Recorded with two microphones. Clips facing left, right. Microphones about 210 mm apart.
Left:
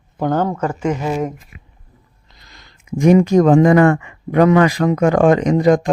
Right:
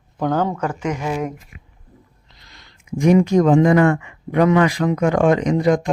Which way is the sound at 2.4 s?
45° left (ahead or behind).